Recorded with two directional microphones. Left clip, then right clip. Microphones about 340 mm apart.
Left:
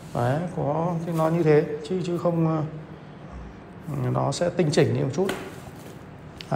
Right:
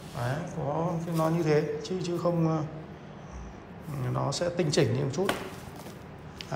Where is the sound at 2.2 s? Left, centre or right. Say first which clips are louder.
Left 3 dB; centre.